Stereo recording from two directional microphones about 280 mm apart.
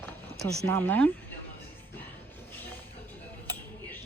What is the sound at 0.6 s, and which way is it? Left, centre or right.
Speech, centre.